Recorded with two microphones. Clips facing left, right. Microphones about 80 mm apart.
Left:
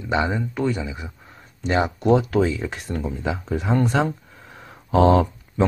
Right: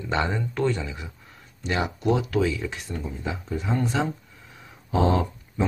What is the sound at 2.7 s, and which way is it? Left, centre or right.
Speech, left.